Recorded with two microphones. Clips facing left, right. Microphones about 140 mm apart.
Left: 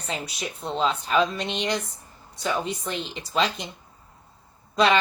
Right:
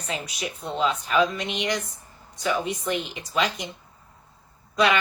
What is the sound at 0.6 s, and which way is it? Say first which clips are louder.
A woman's voice: even; 30° left (ahead or behind).